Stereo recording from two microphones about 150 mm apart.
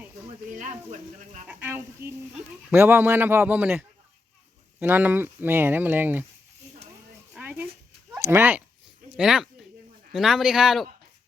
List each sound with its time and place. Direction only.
0.5 s speech: 55° right (ahead or behind)
1.6 s speech: 15° right (ahead or behind)
7.3 s a sound: 10° right (ahead or behind)
8.3 s speech: 15° right (ahead or behind)
9.1 s a sound: 5° right (ahead or behind)
10.1 s speech: centre (ahead or behind)